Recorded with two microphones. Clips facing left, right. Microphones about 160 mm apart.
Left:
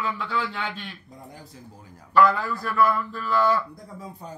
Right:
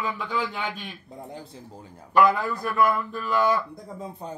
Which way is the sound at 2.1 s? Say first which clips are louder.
Even; 15° right (ahead or behind).